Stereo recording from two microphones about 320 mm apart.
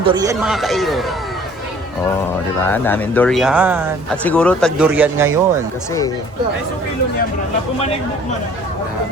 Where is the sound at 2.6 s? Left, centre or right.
Centre.